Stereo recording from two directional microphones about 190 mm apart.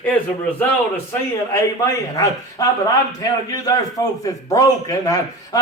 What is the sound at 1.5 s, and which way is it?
A man's voice, 15° left (ahead or behind).